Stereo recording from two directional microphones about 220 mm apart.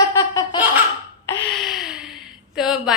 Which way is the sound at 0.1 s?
15° left (ahead or behind).